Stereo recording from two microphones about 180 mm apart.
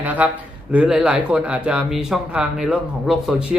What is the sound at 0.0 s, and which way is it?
Speech, 10° right (ahead or behind).